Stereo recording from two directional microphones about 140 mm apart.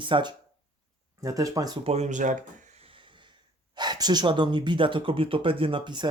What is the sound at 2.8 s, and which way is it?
Wheeze, 35° right (ahead or behind).